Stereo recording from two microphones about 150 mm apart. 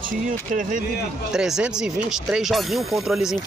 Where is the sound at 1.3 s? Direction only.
5° right (ahead or behind).